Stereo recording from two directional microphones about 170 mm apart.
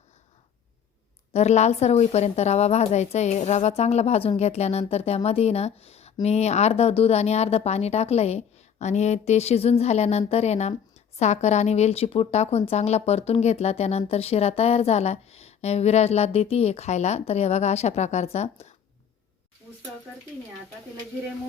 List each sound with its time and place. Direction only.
1.3 s speech: 40° left (ahead or behind)